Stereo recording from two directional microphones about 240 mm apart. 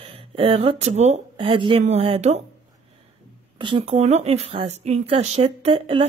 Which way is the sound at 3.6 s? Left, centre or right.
Right.